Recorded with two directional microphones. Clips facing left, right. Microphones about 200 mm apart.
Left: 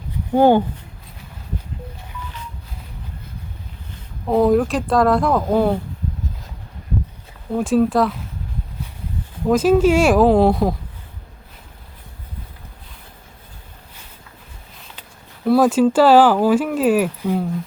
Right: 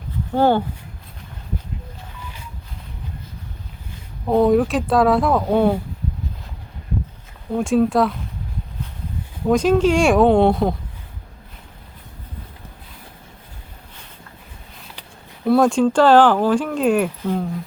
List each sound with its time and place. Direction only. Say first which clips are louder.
0.3 s speech: left 4 dB; 15° left (ahead or behind)
4.3 s speech: even; centre (ahead or behind)
7.5 s speech: even; centre (ahead or behind)
9.5 s speech: left 1 dB; 5° left (ahead or behind)
15.4 s speech: left 1 dB; 5° left (ahead or behind)